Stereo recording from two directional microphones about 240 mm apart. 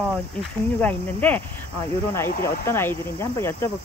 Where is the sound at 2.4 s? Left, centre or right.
Centre.